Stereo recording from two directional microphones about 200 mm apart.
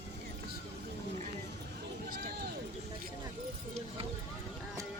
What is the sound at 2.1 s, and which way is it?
Run, 55° right (ahead or behind).